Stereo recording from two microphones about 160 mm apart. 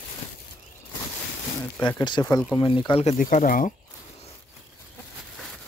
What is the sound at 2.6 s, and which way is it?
Speech, 30° left (ahead or behind).